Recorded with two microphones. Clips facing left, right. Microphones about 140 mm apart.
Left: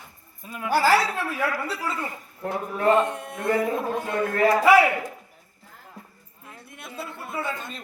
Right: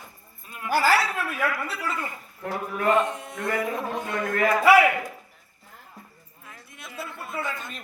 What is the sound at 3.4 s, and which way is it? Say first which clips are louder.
Cutlery: left 4 dB; 30° left (ahead or behind).